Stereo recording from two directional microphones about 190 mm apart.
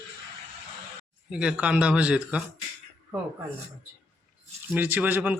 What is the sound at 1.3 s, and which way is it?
A man's voice, 5° right (ahead or behind).